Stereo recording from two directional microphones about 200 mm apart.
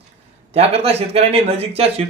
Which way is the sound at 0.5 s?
30° right (ahead or behind).